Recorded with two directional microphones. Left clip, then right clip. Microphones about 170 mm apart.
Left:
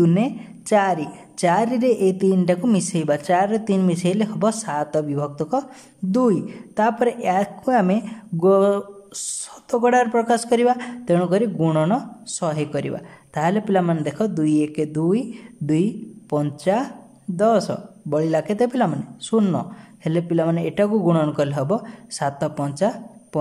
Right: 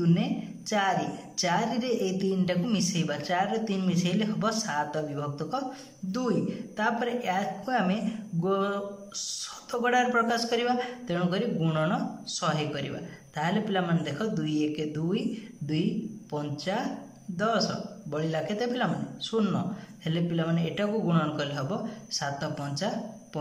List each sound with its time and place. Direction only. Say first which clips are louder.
0.0 s a man's voice: left 9 dB; 45° left (ahead or behind)